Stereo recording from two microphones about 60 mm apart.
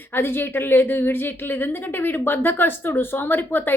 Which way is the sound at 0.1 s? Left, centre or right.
Left.